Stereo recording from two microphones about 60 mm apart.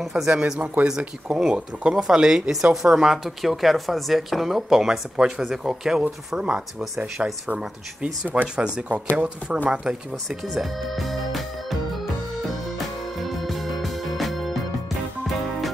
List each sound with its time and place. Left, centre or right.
0.0 s speech: centre
0.3 s speech: centre
10.5 s speech: centre
12.4 s music: centre